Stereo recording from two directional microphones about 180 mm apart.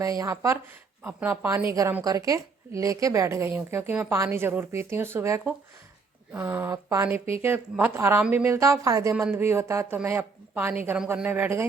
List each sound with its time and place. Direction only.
0.0 s speech: 20° right (ahead or behind)